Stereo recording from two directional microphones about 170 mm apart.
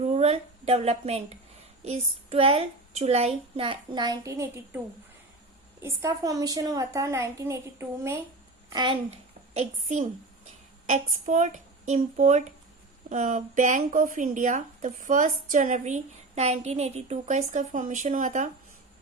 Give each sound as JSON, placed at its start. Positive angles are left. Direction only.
{"t": 0.0, "sound": "a woman's voice", "side_deg": -40}
{"t": 5.8, "sound": "a woman's voice", "side_deg": -20}
{"t": 8.7, "sound": "a child's voice", "side_deg": -25}
{"t": 9.6, "sound": "speech", "side_deg": -45}